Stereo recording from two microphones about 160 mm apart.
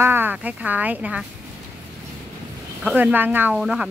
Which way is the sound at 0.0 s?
15° right (ahead or behind).